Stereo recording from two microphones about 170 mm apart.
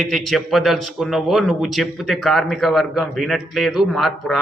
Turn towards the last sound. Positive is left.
turn(degrees=0)  # may be behind; listen again after turning